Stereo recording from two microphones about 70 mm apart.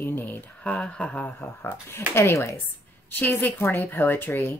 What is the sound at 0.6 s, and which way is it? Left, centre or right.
Speech, centre.